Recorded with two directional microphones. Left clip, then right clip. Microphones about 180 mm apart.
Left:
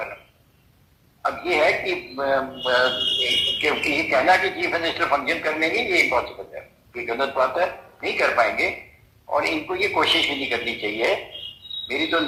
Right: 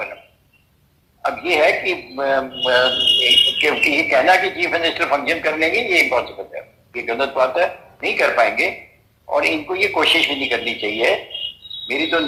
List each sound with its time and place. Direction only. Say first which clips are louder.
1.2 s a man's voice: right 4 dB; 30° right (ahead or behind)